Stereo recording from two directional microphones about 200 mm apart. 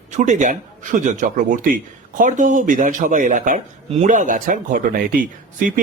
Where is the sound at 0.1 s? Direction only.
35° right (ahead or behind).